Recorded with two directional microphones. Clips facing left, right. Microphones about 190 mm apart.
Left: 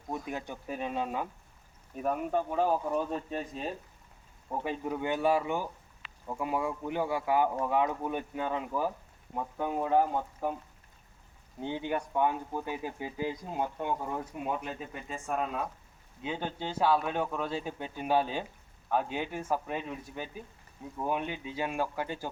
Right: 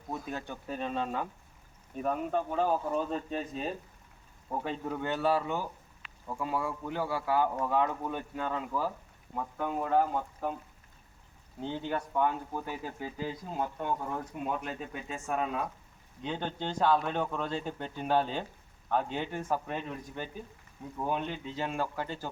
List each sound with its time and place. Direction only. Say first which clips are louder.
0.3 s speech: left 1 dB; 15° left (ahead or behind)
11.6 s speech: left 1 dB; 15° left (ahead or behind)